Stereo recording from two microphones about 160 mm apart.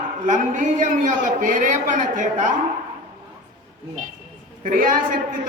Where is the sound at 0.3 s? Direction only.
50° right (ahead or behind).